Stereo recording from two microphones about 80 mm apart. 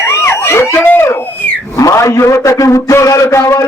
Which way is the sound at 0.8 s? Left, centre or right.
Left.